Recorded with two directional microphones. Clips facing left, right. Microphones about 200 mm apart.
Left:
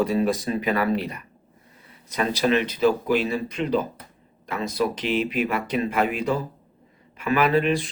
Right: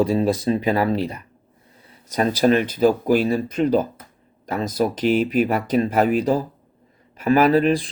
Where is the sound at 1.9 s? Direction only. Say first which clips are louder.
Right 4 dB; 40° right (ahead or behind).